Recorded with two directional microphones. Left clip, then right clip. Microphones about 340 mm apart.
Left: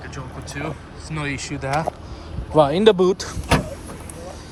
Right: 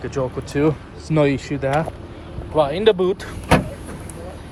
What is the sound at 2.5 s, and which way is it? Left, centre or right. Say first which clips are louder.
Speech: left 2 dB; left.